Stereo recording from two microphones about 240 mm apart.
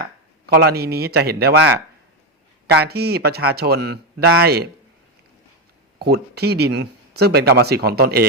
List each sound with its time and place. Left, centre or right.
0.0 s speech: right
6.0 s speech: right